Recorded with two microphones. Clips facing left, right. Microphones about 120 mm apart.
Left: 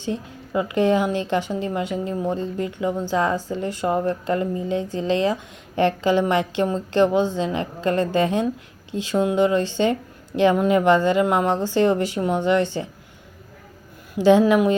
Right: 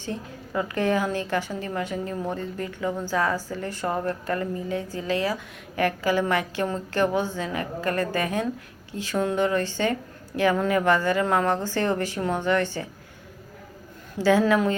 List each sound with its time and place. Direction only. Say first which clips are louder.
0.0 s a woman's voice: left 5 dB; 20° left (ahead or behind)
14.2 s a woman's voice: left 5 dB; 15° left (ahead or behind)